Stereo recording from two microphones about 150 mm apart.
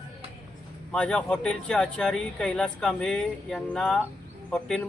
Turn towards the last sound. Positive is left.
turn(degrees=5)  # may be behind; listen again after turning